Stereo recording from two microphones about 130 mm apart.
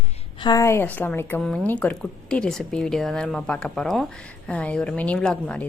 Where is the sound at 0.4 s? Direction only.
25° left (ahead or behind).